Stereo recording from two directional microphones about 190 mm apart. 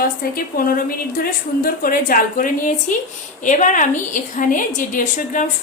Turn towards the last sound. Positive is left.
turn(degrees=40)  # may be behind; listen again after turning